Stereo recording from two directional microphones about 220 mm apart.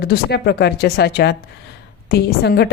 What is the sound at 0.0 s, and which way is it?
A woman's voice, 45° left (ahead or behind).